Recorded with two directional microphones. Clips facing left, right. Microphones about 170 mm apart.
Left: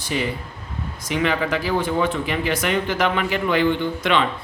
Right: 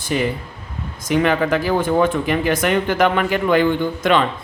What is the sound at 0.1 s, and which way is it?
A man's voice, 50° right (ahead or behind).